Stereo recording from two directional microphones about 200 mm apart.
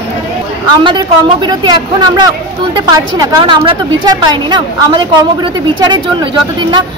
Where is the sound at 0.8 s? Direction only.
25° right (ahead or behind).